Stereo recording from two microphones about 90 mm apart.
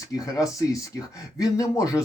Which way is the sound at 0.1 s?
40° left (ahead or behind).